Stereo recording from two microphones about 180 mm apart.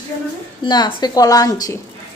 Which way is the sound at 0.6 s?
25° left (ahead or behind).